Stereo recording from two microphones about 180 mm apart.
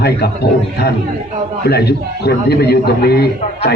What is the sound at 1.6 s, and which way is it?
A man's voice, 65° left (ahead or behind).